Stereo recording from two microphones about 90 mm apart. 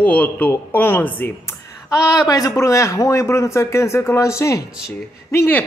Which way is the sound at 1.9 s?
40° left (ahead or behind).